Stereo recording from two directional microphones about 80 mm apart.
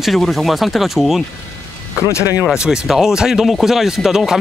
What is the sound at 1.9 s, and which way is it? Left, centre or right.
Speech, left.